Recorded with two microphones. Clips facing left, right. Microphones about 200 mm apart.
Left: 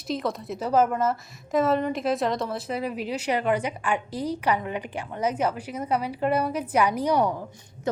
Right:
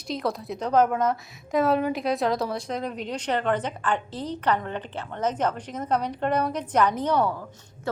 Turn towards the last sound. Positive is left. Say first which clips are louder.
# left 2 dB
turn(degrees=20)  # may be behind; listen again after turning